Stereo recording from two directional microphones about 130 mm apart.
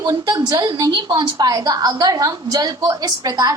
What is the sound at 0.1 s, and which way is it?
A woman's voice, 30° right (ahead or behind).